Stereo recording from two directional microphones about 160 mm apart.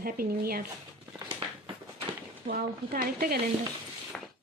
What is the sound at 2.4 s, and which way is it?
Speech, 65° right (ahead or behind).